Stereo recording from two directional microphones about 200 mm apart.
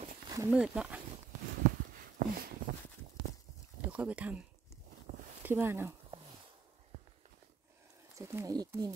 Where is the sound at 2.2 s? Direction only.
45° right (ahead or behind).